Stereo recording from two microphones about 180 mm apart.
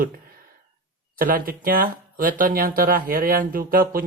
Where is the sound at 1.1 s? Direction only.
50° right (ahead or behind).